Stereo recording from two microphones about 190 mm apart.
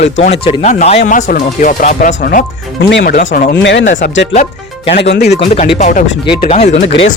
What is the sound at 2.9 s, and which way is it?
Speech, 60° left (ahead or behind).